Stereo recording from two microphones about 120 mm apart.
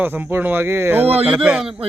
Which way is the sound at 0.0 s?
15° right (ahead or behind).